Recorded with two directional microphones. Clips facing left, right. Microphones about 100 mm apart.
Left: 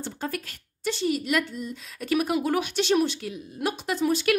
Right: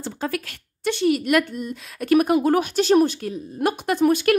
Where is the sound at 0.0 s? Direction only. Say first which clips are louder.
Right 5 dB; 90° right; by 4.4 s 55° right (ahead or behind).